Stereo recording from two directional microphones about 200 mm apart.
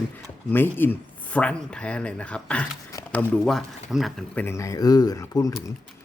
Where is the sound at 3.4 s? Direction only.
Centre (ahead or behind).